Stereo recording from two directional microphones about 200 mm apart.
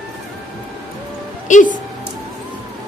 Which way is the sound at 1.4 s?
40° left (ahead or behind).